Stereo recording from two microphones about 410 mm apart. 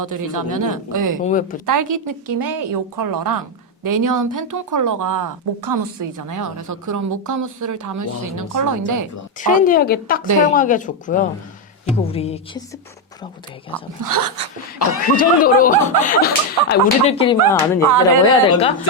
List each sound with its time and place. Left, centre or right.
0.0 s speech: right
1.2 s speech: centre
1.6 s speech: right
9.4 s speech: centre
14.0 s speech: right
15.1 s speech: centre
17.8 s speech: right